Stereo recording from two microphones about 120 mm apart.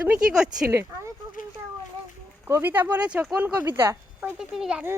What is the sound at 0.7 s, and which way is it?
Speech, 20° right (ahead or behind).